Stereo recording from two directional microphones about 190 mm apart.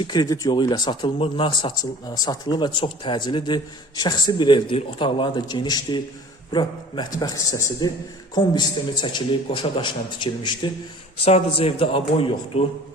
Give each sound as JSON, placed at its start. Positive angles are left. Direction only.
{"t": 0.0, "sound": "speech", "side_deg": 20}